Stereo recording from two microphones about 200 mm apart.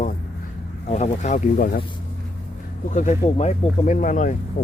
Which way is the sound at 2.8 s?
40° left (ahead or behind).